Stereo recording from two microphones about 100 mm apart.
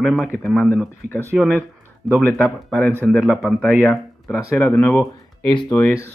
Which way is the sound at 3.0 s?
Centre (ahead or behind).